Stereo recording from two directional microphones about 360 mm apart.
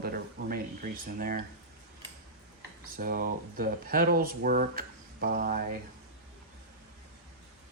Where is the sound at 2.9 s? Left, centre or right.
Right.